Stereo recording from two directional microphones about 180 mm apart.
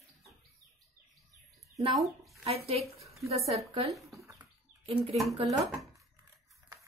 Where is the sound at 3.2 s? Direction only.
35° right (ahead or behind).